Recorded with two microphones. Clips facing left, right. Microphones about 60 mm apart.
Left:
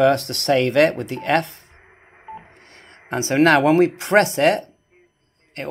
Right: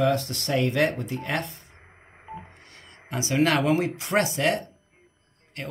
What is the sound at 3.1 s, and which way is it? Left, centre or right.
Speech, left.